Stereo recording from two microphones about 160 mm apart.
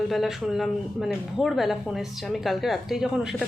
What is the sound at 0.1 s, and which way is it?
Speech, centre (ahead or behind).